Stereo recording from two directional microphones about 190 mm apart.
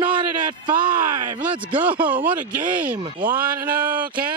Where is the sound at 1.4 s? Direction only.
10° right (ahead or behind).